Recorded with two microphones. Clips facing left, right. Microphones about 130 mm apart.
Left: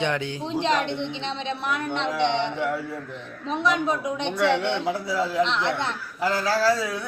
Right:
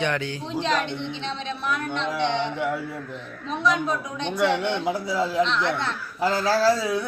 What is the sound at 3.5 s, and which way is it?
Speech, 20° left (ahead or behind).